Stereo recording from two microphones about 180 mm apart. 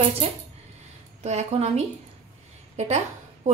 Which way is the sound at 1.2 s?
40° right (ahead or behind).